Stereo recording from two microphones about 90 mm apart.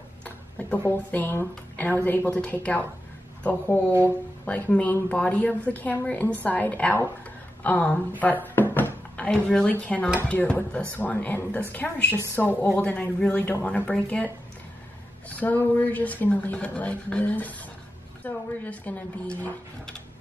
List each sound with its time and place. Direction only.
0.2 s tick-tock: 20° left (ahead or behind)
1.8 s speech: 20° left (ahead or behind)
8.2 s a sound: 20° left (ahead or behind)
9.7 s speech: 20° left (ahead or behind)